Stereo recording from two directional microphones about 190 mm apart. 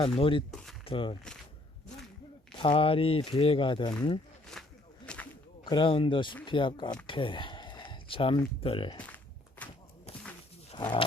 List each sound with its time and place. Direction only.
0.0 s speech: 30° left (ahead or behind)
0.5 s speech: centre (ahead or behind)
0.9 s speech: 30° left (ahead or behind)
2.6 s speech: 25° left (ahead or behind)
4.5 s a sound: 5° left (ahead or behind)
5.6 s speech: 25° left (ahead or behind)
9.0 s walk: 5° left (ahead or behind)
10.7 s speech: 25° left (ahead or behind)